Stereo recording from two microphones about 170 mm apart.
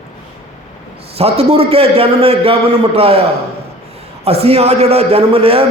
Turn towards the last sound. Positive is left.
turn(degrees=-35)  # may be behind; listen again after turning